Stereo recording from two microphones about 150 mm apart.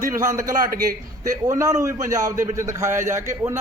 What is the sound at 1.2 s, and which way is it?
A man's voice, 20° right (ahead or behind).